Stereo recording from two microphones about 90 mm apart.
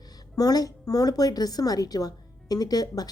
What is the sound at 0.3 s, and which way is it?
A woman's voice, 45° left (ahead or behind).